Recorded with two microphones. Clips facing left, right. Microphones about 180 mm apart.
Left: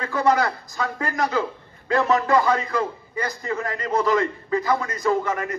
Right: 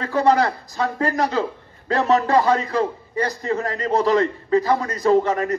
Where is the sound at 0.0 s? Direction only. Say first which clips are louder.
Right 3 dB; 35° right (ahead or behind).